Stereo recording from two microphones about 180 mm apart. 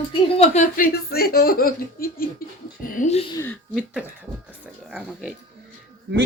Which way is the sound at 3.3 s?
15° left (ahead or behind).